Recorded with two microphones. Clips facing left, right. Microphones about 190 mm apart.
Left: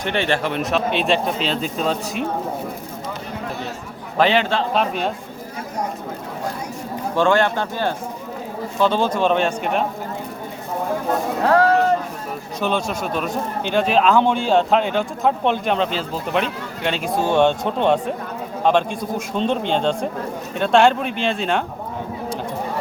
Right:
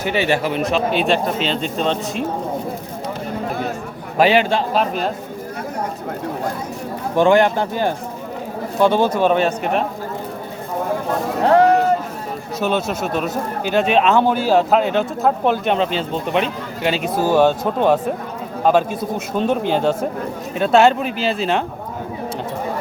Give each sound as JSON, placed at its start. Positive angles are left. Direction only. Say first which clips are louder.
{"t": 0.0, "sound": "speech", "louder": "right 2 dB", "side_deg": -5}
{"t": 4.2, "sound": "speech", "louder": "right 3 dB", "side_deg": -10}
{"t": 4.7, "sound": "speech", "louder": "right 1 dB", "side_deg": 0}
{"t": 7.2, "sound": "speech", "louder": "right 4 dB", "side_deg": -15}
{"t": 11.4, "sound": "a sound", "louder": "right 3 dB", "side_deg": -20}
{"t": 12.5, "sound": "speech", "louder": "right 2 dB", "side_deg": -5}